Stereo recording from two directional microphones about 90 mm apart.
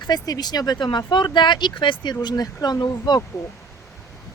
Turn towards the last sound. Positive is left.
turn(degrees=50)  # may be behind; listen again after turning